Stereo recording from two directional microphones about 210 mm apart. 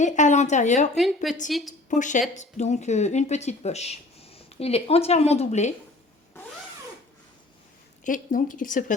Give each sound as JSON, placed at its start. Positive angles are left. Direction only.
{"t": 0.0, "sound": "speech", "side_deg": 35}
{"t": 0.9, "sound": "a woman's voice", "side_deg": 0}
{"t": 1.9, "sound": "speech", "side_deg": 35}
{"t": 8.0, "sound": "speech", "side_deg": 40}